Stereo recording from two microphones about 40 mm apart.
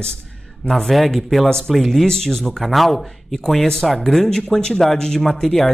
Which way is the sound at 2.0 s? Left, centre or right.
Centre.